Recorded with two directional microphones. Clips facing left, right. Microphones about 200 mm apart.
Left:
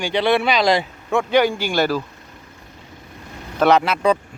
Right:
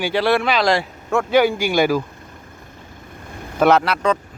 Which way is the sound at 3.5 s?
5° right (ahead or behind).